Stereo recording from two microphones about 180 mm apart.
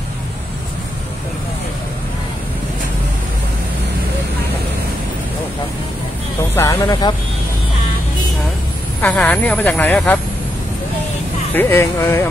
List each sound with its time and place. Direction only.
6.5 s speech: 15° left (ahead or behind)
9.0 s speech: 10° left (ahead or behind)
11.5 s speech: 15° left (ahead or behind)